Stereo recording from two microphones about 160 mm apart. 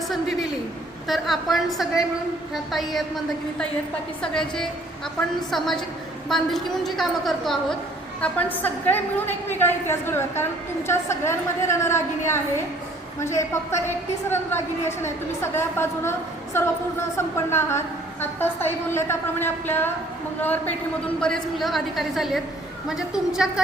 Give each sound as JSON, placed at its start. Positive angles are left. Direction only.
{"t": 0.1, "sound": "a sound", "side_deg": 0}
{"t": 1.0, "sound": "a woman's voice", "side_deg": 0}
{"t": 4.2, "sound": "a woman's voice", "side_deg": 5}